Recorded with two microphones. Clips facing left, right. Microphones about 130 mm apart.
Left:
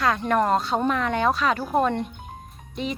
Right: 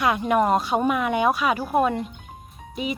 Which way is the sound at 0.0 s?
10° right (ahead or behind).